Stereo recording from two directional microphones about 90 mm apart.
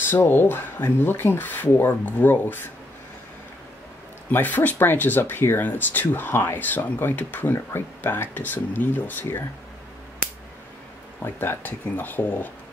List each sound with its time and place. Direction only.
0.0 s speech: 25° left (ahead or behind)
4.3 s speech: 20° left (ahead or behind)
11.2 s speech: 25° left (ahead or behind)